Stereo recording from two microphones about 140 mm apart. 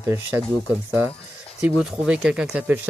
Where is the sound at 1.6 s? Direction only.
5° right (ahead or behind).